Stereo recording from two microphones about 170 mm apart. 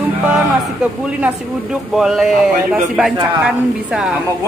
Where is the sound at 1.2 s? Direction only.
5° right (ahead or behind).